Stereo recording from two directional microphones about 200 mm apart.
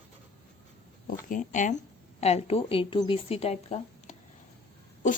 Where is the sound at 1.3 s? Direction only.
40° left (ahead or behind).